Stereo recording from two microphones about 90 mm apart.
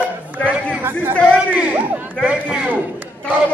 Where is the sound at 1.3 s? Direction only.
15° right (ahead or behind).